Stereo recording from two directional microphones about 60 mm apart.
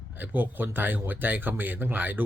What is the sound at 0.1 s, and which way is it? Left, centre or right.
Speech, right.